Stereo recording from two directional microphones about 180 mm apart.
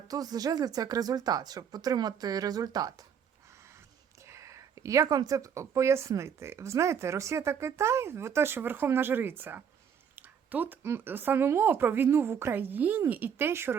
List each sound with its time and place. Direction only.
0.1 s speech: 20° right (ahead or behind)